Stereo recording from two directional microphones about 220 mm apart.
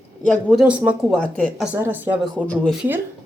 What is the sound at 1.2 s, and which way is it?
Speech, 5° left (ahead or behind).